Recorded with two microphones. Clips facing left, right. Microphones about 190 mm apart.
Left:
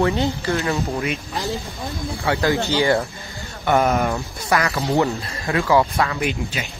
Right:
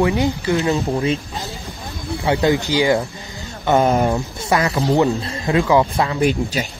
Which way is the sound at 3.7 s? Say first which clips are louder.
Right 3 dB; 25° right (ahead or behind).